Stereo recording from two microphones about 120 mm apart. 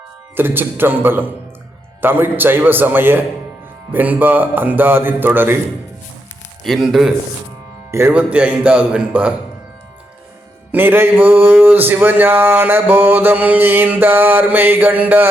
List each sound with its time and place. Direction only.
0.3 s speech: 15° right (ahead or behind)
6.7 s a man's voice: centre (ahead or behind)
7.9 s speech: 20° right (ahead or behind)
8.1 s speech: 10° right (ahead or behind)
10.7 s speech: 15° right (ahead or behind)